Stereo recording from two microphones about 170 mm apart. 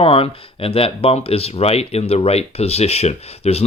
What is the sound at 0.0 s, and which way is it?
Speech, 35° left (ahead or behind).